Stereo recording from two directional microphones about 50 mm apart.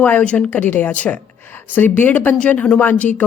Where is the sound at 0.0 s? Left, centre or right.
Left.